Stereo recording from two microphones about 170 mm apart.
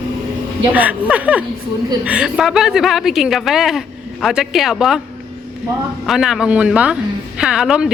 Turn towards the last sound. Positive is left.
turn(degrees=-5)  # may be behind; listen again after turning